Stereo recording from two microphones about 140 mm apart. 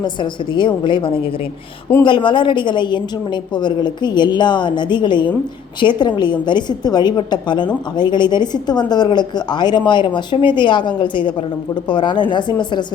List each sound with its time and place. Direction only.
0.0 s a woman's voice: 35° left (ahead or behind)